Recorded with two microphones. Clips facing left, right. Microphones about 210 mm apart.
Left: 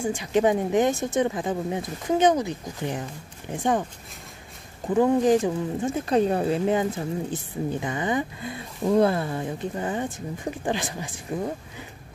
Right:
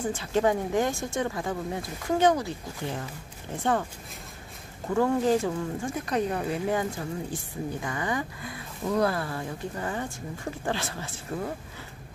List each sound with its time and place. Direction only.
0.0 s speech: 15° left (ahead or behind)
4.8 s speech: 15° left (ahead or behind)